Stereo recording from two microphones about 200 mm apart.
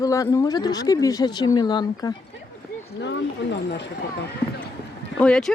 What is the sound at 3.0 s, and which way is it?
Speech, 60° left (ahead or behind).